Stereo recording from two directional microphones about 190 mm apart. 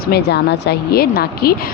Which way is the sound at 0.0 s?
55° left (ahead or behind).